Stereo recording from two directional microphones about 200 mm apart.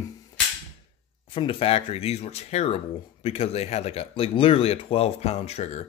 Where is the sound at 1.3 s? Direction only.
25° left (ahead or behind).